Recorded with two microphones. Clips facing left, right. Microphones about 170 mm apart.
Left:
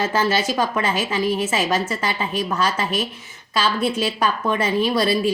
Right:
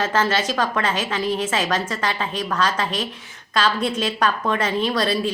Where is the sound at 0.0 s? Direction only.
10° left (ahead or behind).